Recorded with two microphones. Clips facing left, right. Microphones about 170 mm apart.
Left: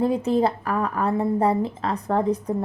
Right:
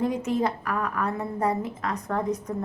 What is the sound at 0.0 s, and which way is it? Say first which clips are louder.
A woman's voice: left 5 dB; 30° left (ahead or behind).